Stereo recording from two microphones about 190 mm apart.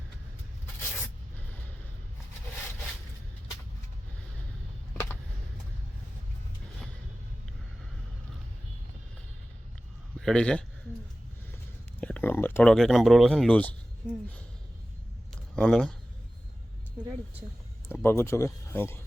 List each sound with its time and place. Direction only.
10.2 s a man's voice: 5° left (ahead or behind)
11.9 s speech: 5° left (ahead or behind)
15.5 s speech: 5° left (ahead or behind)
17.8 s speech: 15° left (ahead or behind)